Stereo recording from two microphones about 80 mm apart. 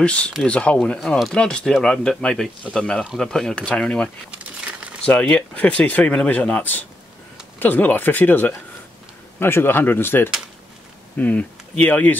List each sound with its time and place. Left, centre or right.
0.0 s speech: centre
4.3 s crumpling: centre
5.0 s speech: centre
11.1 s speech: centre